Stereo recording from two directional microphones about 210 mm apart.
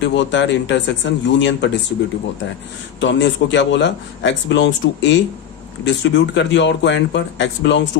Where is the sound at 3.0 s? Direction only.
60° left (ahead or behind).